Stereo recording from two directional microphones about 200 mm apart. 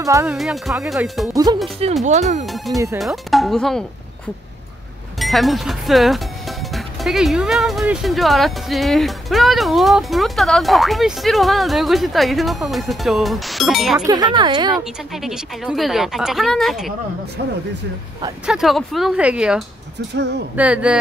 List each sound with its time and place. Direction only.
0.0 s speech: 15° right (ahead or behind)
0.4 s speech: centre (ahead or behind)
1.3 s speech: 20° right (ahead or behind)
2.0 s speech: 35° right (ahead or behind)
2.4 s speech: centre (ahead or behind)
5.2 s speech: centre (ahead or behind)
14.0 s speech: 20° right (ahead or behind)
15.1 s speech: centre (ahead or behind)
18.4 s speech: centre (ahead or behind)
20.2 s speech: 60° right (ahead or behind)
20.5 s speech: 5° right (ahead or behind)